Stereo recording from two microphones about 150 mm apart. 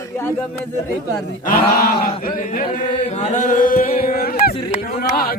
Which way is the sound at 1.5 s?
80° left.